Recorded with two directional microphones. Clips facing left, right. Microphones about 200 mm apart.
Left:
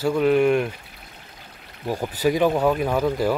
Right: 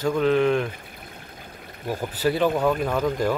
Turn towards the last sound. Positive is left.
turn(degrees=10)  # may be behind; listen again after turning